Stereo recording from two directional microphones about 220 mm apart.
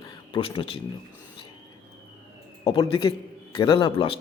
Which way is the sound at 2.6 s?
20° left (ahead or behind).